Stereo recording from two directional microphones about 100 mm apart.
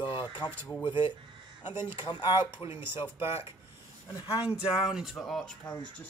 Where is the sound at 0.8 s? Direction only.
55° left (ahead or behind).